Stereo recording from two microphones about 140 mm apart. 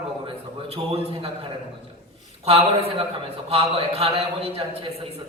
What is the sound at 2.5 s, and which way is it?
A man's voice, 45° right (ahead or behind).